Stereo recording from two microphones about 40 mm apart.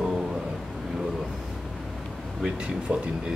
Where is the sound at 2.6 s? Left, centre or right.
Right.